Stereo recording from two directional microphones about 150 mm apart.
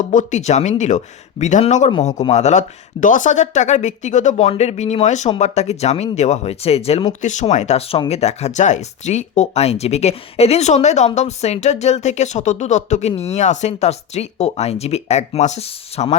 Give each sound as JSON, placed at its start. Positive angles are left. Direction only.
{"t": 0.1, "sound": "speech", "side_deg": 55}
{"t": 7.1, "sound": "speech", "side_deg": 55}